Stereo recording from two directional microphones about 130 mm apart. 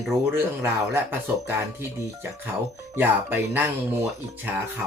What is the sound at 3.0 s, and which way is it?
Speech, 15° right (ahead or behind).